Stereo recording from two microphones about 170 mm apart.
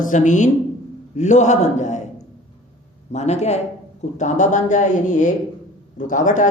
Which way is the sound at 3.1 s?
40° left (ahead or behind).